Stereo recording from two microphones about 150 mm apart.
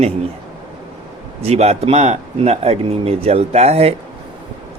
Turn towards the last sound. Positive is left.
turn(degrees=-40)  # may be behind; listen again after turning